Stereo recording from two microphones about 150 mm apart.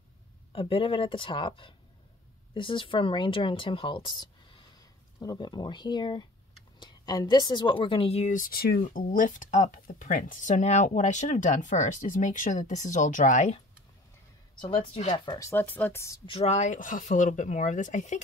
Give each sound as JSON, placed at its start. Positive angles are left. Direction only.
{"t": 0.5, "sound": "speech", "side_deg": 35}
{"t": 8.3, "sound": "speech", "side_deg": 70}
{"t": 15.2, "sound": "speech", "side_deg": 20}
{"t": 16.3, "sound": "speech", "side_deg": 45}